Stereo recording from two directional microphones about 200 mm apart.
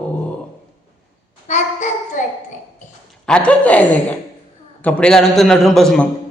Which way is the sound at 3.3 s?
5° left (ahead or behind).